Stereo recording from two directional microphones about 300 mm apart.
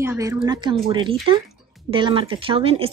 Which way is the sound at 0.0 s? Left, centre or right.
Centre.